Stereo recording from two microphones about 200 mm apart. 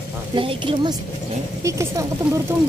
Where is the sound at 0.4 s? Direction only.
25° right (ahead or behind).